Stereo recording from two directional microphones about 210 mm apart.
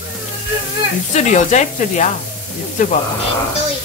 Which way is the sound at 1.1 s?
35° left (ahead or behind).